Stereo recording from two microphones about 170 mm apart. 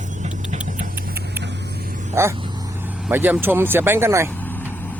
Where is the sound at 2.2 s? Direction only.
15° right (ahead or behind).